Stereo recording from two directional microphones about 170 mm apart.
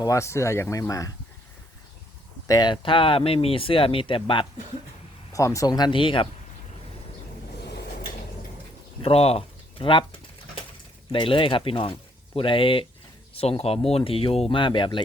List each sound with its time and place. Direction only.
0.0 s speech: 20° left (ahead or behind)
2.5 s speech: 25° left (ahead or behind)
5.3 s speech: 20° left (ahead or behind)
9.0 s pigeon: 35° left (ahead or behind)
11.1 s speech: 30° left (ahead or behind)